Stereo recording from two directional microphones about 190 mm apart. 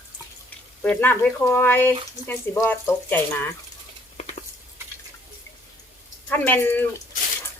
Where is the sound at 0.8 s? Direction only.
10° left (ahead or behind).